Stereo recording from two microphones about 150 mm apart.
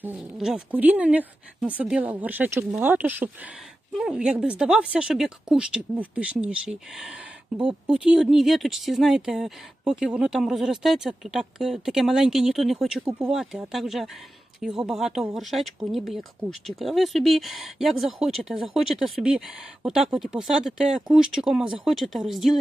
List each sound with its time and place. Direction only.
0.0 s speech: 10° right (ahead or behind)
7.6 s speech: 35° right (ahead or behind)
8.0 s speech: 5° right (ahead or behind)